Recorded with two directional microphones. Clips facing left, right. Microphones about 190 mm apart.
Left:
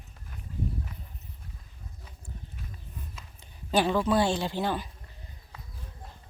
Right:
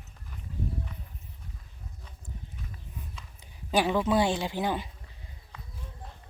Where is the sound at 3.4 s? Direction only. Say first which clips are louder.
Left 1 dB; 10° right (ahead or behind).